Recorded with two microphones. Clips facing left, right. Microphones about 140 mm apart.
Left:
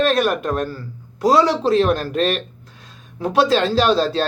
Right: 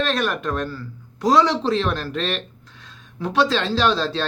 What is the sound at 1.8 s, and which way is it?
Speech, 45° left (ahead or behind).